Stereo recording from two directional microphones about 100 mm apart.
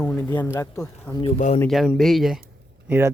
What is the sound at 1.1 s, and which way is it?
Speech, 20° left (ahead or behind).